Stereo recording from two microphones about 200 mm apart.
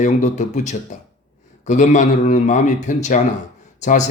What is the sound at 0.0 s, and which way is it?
Speech, 35° left (ahead or behind).